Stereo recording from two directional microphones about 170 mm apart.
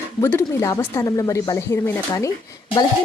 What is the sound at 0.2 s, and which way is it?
Speech, 15° left (ahead or behind).